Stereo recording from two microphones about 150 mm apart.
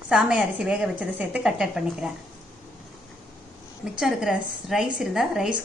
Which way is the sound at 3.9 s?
5° right (ahead or behind).